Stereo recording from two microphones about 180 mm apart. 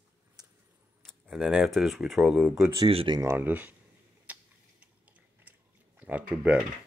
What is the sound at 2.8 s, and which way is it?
Speech, 30° right (ahead or behind).